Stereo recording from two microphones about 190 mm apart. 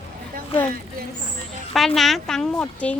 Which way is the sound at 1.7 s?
Centre (ahead or behind).